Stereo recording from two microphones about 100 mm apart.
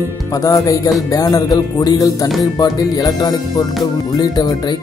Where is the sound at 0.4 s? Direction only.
35° left (ahead or behind).